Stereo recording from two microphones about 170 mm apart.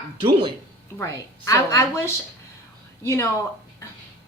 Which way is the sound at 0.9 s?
20° left (ahead or behind).